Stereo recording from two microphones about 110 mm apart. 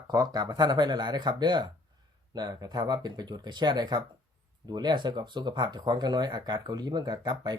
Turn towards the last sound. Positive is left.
turn(degrees=-40)  # may be behind; listen again after turning